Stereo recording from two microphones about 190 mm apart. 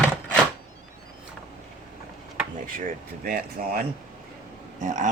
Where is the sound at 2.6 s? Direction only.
45° right (ahead or behind).